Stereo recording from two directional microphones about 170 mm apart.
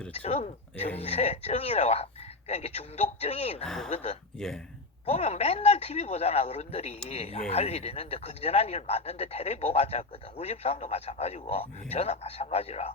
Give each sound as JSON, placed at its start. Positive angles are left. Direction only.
{"t": 0.1, "sound": "speech", "side_deg": 40}
{"t": 3.6, "sound": "speech", "side_deg": 5}
{"t": 3.8, "sound": "speech", "side_deg": 40}
{"t": 4.4, "sound": "speech", "side_deg": 5}
{"t": 5.0, "sound": "speech", "side_deg": 40}